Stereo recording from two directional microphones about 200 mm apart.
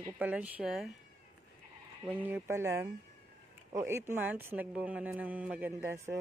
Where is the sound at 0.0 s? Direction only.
10° right (ahead or behind).